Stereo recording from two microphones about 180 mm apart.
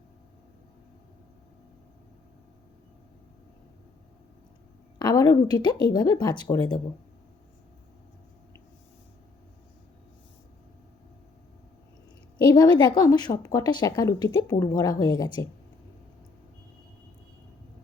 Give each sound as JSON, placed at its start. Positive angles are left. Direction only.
{"t": 4.9, "sound": "a woman's voice", "side_deg": 20}
{"t": 12.5, "sound": "a woman's voice", "side_deg": 20}